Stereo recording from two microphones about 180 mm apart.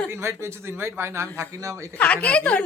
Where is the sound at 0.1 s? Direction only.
15° right (ahead or behind).